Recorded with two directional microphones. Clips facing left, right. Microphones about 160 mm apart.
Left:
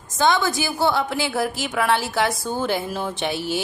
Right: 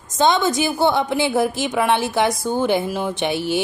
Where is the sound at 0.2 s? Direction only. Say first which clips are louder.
Right 3 dB; 20° right (ahead or behind).